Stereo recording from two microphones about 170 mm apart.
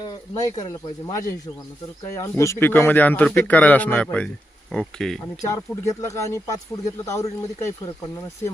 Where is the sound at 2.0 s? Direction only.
20° left (ahead or behind); by 5.2 s 5° left (ahead or behind).